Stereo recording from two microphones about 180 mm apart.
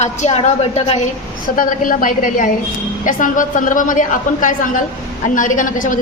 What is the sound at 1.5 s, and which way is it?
A woman's voice, 50° left (ahead or behind).